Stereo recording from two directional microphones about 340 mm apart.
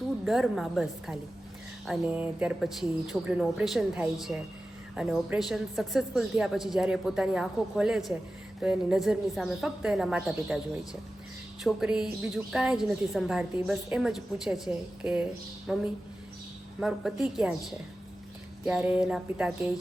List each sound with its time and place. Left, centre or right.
0.3 s a woman's voice: centre
11.6 s a woman's voice: centre